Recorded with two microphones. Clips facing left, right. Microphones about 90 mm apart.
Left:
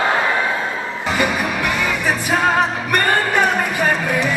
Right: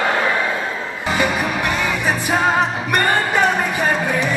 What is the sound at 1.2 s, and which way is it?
Music, centre (ahead or behind).